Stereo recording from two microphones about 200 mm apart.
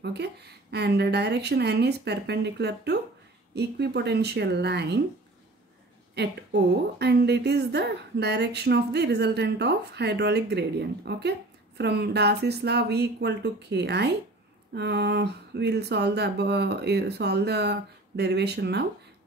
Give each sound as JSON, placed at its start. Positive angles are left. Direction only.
{"t": 0.0, "sound": "a woman's voice", "side_deg": -55}
{"t": 6.1, "sound": "a woman's voice", "side_deg": -55}